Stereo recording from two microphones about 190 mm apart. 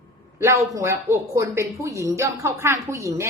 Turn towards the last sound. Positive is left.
turn(degrees=-15)  # may be behind; listen again after turning